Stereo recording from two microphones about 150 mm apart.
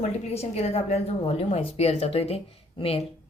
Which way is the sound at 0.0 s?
45° left (ahead or behind).